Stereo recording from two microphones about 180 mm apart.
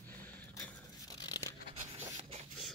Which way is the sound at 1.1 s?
20° left (ahead or behind).